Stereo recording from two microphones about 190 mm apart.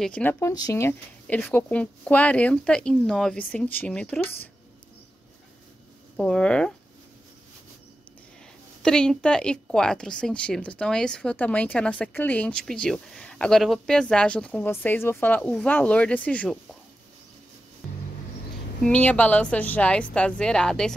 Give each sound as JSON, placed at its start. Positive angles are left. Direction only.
{"t": 0.0, "sound": "speech", "side_deg": 10}
{"t": 6.1, "sound": "a woman's voice", "side_deg": 5}
{"t": 8.8, "sound": "a woman's voice", "side_deg": 5}
{"t": 18.9, "sound": "a woman's voice", "side_deg": 5}